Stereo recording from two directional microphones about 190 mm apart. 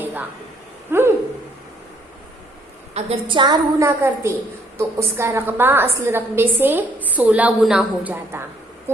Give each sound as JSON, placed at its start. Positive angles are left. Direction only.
{"t": 0.0, "sound": "a sound", "side_deg": -10}
{"t": 0.9, "sound": "hoot", "side_deg": -10}
{"t": 2.9, "sound": "a woman's voice", "side_deg": -25}